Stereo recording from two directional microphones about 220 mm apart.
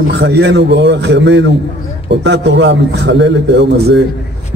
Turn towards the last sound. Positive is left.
turn(degrees=-50)  # may be behind; listen again after turning